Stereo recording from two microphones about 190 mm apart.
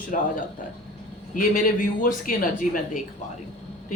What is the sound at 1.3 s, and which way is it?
A woman's voice, 45° left (ahead or behind).